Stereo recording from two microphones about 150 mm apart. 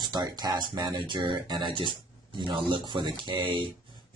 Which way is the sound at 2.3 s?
35° right (ahead or behind).